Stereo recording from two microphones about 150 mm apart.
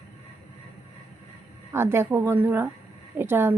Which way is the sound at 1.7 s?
15° right (ahead or behind).